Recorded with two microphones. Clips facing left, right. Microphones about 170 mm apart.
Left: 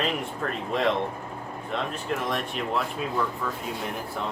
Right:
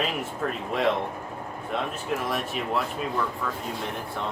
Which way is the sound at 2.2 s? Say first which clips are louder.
Even; 5° right (ahead or behind).